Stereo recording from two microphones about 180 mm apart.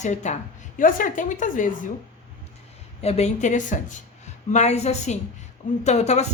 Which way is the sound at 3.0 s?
35° left (ahead or behind).